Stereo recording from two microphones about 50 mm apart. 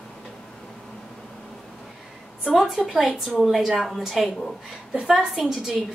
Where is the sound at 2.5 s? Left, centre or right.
Centre.